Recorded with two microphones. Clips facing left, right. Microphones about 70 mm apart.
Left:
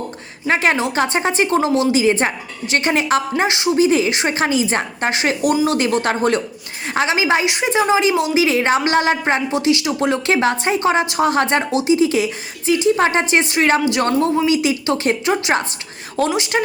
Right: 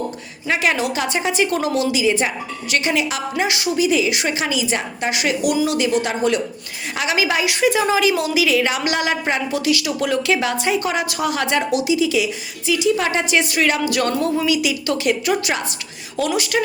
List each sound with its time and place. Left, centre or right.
0.4 s a woman's voice: left
2.0 s a woman's voice: left
6.9 s a woman's voice: left